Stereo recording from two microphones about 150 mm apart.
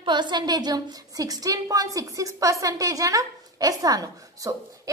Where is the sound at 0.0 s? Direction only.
30° right (ahead or behind).